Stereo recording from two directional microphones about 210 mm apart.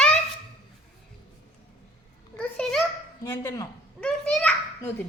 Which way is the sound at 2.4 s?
5° left (ahead or behind).